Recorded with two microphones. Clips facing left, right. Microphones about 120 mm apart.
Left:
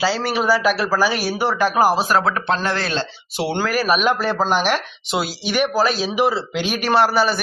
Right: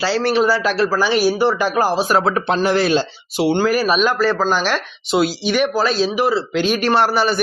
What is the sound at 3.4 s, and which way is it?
Speech, centre (ahead or behind).